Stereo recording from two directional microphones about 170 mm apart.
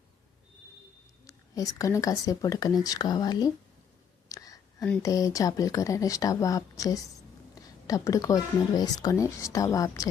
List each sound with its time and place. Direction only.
1.3 s speech: 20° left (ahead or behind)
4.3 s whispering: 20° left (ahead or behind)
5.0 s speech: 20° left (ahead or behind)